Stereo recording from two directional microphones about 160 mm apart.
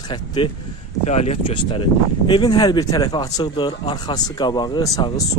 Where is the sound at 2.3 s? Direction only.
30° left (ahead or behind).